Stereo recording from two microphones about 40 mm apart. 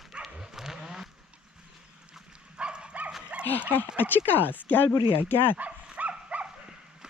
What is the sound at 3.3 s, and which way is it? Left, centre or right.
Dog, right.